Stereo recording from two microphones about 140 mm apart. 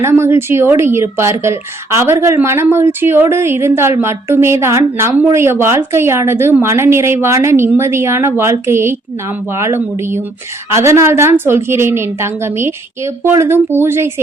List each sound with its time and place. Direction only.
0.0 s a woman's voice: 20° right (ahead or behind)